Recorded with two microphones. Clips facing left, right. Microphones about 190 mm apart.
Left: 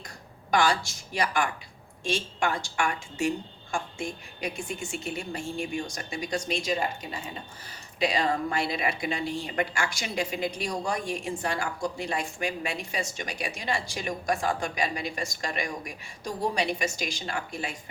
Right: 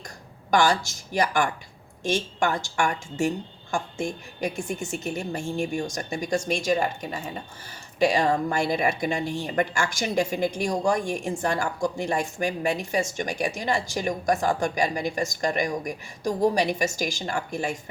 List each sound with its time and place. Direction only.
0.5 s speech: 45° right (ahead or behind)